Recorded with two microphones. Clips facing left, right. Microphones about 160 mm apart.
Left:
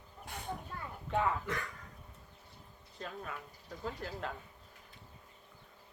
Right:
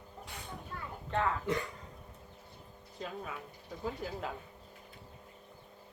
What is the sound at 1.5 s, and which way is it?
Speech, 20° right (ahead or behind).